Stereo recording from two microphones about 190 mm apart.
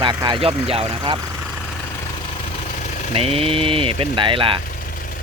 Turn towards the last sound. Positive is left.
turn(degrees=-25)  # may be behind; listen again after turning